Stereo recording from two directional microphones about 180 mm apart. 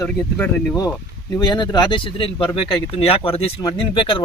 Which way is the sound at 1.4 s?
25° left (ahead or behind).